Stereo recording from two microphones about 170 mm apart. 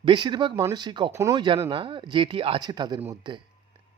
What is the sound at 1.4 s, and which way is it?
Speech, 30° right (ahead or behind).